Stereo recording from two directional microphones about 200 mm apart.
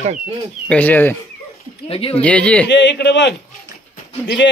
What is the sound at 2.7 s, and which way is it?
Speech, 60° left (ahead or behind).